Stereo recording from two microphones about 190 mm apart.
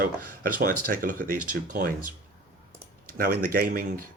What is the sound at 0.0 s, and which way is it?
Speech, 50° right (ahead or behind).